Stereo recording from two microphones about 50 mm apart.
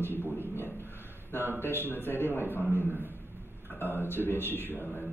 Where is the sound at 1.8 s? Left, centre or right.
Left.